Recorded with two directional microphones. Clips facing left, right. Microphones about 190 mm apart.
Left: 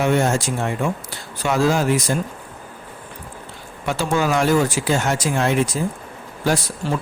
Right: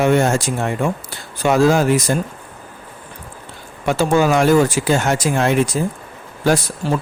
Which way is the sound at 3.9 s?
50° right (ahead or behind).